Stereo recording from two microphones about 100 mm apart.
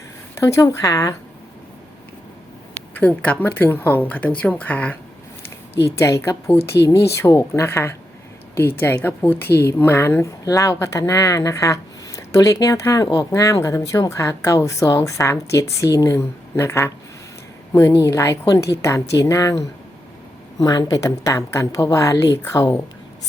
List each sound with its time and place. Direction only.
0.3 s a woman's voice: 30° left (ahead or behind)
3.0 s a woman's voice: 15° left (ahead or behind)
5.8 s a woman's voice: 30° left (ahead or behind)